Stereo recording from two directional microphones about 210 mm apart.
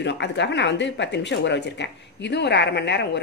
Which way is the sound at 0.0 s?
55° left (ahead or behind).